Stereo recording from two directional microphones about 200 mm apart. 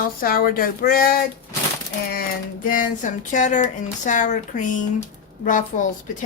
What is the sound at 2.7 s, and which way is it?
Speech, 40° left (ahead or behind).